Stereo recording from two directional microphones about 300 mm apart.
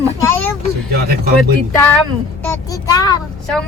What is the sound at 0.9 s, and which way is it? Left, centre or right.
Speech, right.